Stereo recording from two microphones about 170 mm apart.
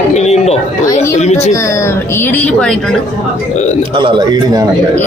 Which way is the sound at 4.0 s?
25° right (ahead or behind).